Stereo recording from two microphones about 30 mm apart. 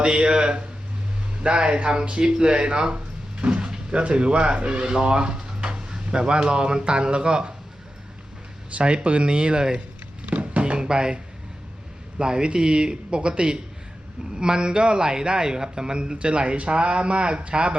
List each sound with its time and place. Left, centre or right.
0.0 s a man's voice: right
9.0 s a man's voice: right
10.2 s a sound: right
10.6 s speech: right
12.2 s a man's voice: right